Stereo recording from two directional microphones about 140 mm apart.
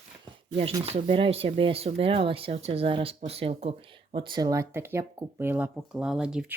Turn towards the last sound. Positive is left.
turn(degrees=-5)  # may be behind; listen again after turning